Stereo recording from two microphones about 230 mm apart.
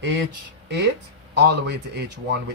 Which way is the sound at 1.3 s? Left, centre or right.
Right.